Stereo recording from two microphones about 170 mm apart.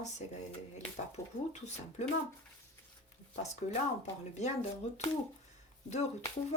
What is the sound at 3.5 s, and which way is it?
Speech, 40° left (ahead or behind).